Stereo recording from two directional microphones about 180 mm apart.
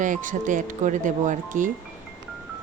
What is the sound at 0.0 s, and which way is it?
Speech, 45° right (ahead or behind).